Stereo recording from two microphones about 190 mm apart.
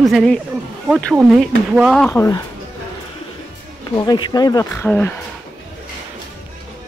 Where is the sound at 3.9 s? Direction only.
20° left (ahead or behind).